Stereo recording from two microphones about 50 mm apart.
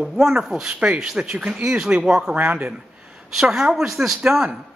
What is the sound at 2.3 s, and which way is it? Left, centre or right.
Speech, right.